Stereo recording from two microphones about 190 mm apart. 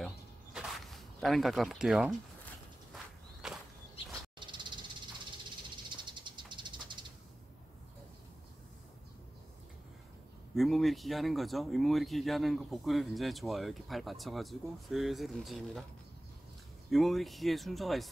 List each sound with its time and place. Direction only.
0.0 s a sound: centre (ahead or behind)
3.4 s walk: 5° right (ahead or behind)
4.4 s snake: 25° right (ahead or behind)
5.9 s a sound: 25° right (ahead or behind)
10.5 s speech: centre (ahead or behind)
16.9 s speech: centre (ahead or behind)